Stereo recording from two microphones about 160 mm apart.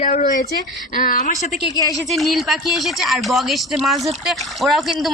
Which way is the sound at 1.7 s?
25° left (ahead or behind).